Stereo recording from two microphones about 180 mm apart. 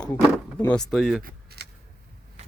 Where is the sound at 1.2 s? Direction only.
60° right (ahead or behind).